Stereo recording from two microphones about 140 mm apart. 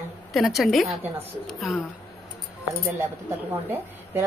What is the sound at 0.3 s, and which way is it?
Speech, centre (ahead or behind).